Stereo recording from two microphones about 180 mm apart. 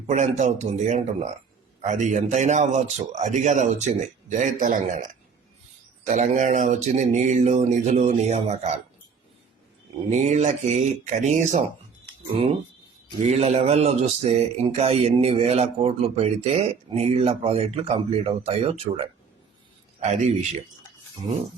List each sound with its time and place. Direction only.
0.1 s speech: 40° right (ahead or behind)
6.1 s speech: 40° right (ahead or behind)
10.1 s speech: 40° right (ahead or behind)